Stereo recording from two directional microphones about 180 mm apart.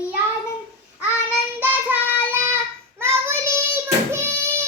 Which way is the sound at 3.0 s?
15° right (ahead or behind).